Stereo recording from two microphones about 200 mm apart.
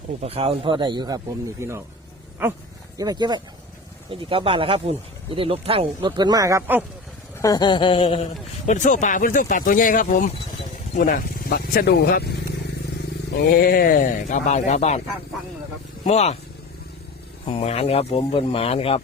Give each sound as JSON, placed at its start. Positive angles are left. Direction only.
{"t": 0.2, "sound": "speech", "side_deg": -30}
{"t": 3.0, "sound": "speech", "side_deg": -20}
{"t": 7.3, "sound": "a man's voice", "side_deg": 15}
{"t": 13.3, "sound": "speech", "side_deg": 50}
{"t": 16.0, "sound": "a man's voice", "side_deg": 30}
{"t": 17.4, "sound": "speech", "side_deg": 30}